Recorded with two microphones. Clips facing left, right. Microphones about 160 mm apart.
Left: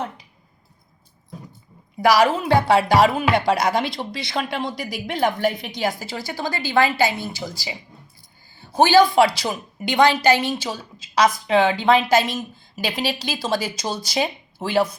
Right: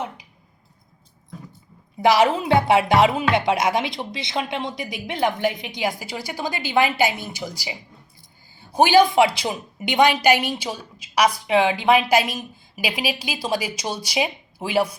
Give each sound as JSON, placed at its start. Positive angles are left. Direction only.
{"t": 2.0, "sound": "a woman's voice", "side_deg": -20}